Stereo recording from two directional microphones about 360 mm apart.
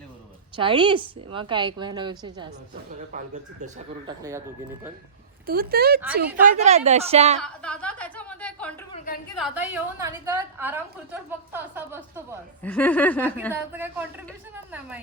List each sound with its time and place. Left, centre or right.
0.5 s a woman's voice: centre
5.5 s a woman's voice: right
7.3 s a woman's voice: centre
12.6 s a woman's voice: centre